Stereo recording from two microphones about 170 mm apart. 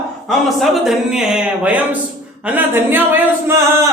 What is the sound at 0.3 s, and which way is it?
A woman's voice, centre (ahead or behind).